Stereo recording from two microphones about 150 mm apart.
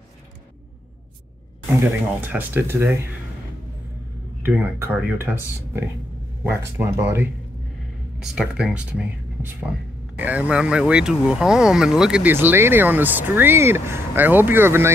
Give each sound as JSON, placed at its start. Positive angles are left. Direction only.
{"t": 1.8, "sound": "speech", "side_deg": -15}
{"t": 4.5, "sound": "speech", "side_deg": -10}